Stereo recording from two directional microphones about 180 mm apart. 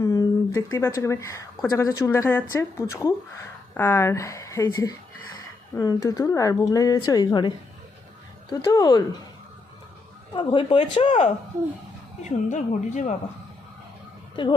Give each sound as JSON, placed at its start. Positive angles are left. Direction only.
{"t": 0.0, "sound": "a woman's voice", "side_deg": 20}
{"t": 10.3, "sound": "speech", "side_deg": 25}
{"t": 12.2, "sound": "speech", "side_deg": 45}
{"t": 14.4, "sound": "speech", "side_deg": 25}